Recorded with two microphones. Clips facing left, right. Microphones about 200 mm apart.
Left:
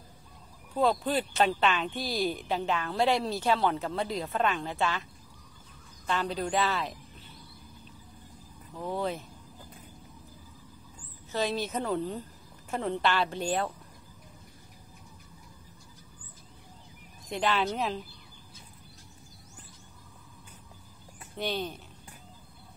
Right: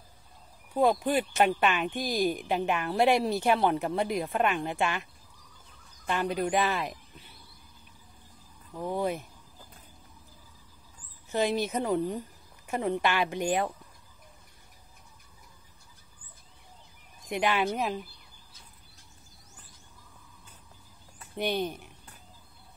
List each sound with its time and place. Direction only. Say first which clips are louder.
0.7 s speech: right 2 dB; 15° right (ahead or behind)
6.0 s speech: right 2 dB; 15° right (ahead or behind)
8.7 s speech: right 2 dB; 15° right (ahead or behind)
11.3 s speech: right 3 dB; 15° right (ahead or behind)
17.3 s speech: right 1 dB; 15° right (ahead or behind)
21.4 s speech: right 3 dB; 15° right (ahead or behind)